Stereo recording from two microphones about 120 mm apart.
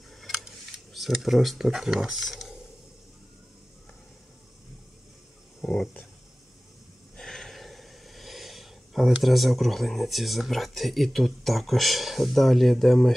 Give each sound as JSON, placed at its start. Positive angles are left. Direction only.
{"t": 0.2, "sound": "camera", "side_deg": 0}
{"t": 0.9, "sound": "speech", "side_deg": 0}
{"t": 5.6, "sound": "speech", "side_deg": 5}
{"t": 7.2, "sound": "speech", "side_deg": 5}